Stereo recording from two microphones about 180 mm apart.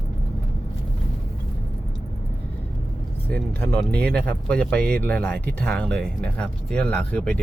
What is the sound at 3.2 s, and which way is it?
Speech, 10° left (ahead or behind).